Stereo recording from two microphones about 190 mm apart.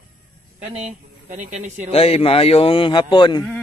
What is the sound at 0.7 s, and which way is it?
Speech, 35° right (ahead or behind).